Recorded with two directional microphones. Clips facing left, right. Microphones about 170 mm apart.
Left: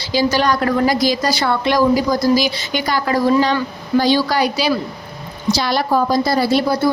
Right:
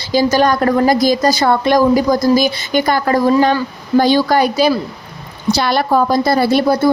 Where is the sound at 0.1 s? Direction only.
45° right (ahead or behind).